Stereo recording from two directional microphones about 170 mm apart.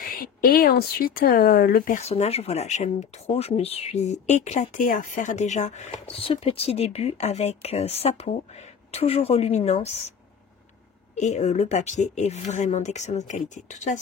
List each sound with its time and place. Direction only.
0.0 s speech: 60° left (ahead or behind)
2.0 s speech: 40° left (ahead or behind)
11.1 s speech: 45° left (ahead or behind)